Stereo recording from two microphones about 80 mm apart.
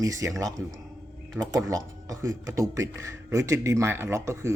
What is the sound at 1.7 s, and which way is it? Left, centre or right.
Speech, right.